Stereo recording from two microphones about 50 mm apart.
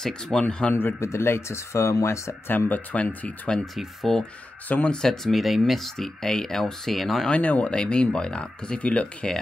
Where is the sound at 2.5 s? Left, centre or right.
Left.